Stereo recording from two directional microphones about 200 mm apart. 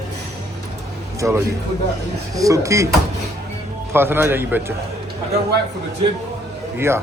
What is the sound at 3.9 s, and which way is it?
Speech, 10° right (ahead or behind).